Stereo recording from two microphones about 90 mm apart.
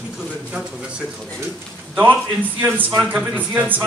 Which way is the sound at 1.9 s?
20° right (ahead or behind).